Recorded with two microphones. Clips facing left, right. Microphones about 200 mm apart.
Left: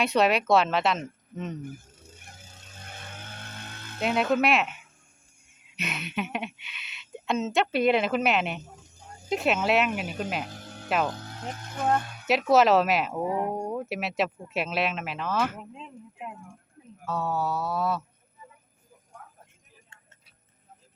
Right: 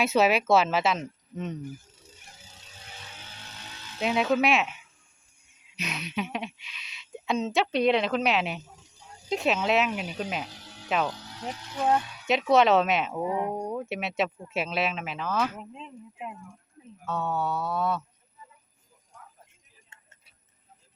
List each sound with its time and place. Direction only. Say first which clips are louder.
0.0 s speech: even; 5° right (ahead or behind)
1.6 s vehicle: even; 55° left (ahead or behind)
4.0 s speech: even; centre (ahead or behind)
8.8 s a sound: left 3 dB; 50° left (ahead or behind)
9.3 s speech: left 1 dB; centre (ahead or behind)
10.4 s music: left 3 dB; 50° left (ahead or behind)
10.8 s speech: left 1 dB; centre (ahead or behind)
11.1 s speech: even; 50° left (ahead or behind)
12.3 s speech: left 1 dB; centre (ahead or behind)
19.9 s vehicle: even; 20° right (ahead or behind)